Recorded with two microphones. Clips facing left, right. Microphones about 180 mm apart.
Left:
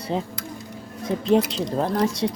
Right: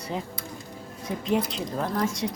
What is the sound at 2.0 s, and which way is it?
Speech, 30° left (ahead or behind).